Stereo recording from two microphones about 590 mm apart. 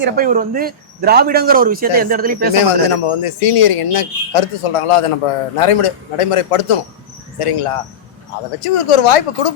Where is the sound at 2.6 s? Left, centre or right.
Left.